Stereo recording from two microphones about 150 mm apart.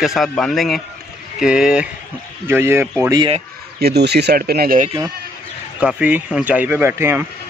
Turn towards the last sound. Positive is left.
turn(degrees=-15)  # may be behind; listen again after turning